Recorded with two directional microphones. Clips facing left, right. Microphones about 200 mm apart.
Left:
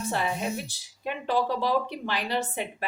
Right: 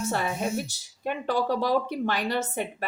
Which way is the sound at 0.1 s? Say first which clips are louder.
Left 1 dB; 45° right (ahead or behind).